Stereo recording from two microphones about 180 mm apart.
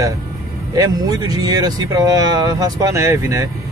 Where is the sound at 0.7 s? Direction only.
20° right (ahead or behind).